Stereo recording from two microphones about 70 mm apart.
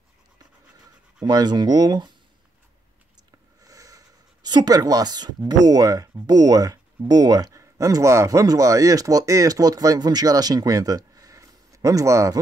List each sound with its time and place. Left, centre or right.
1.2 s speech: right
3.6 s speech: right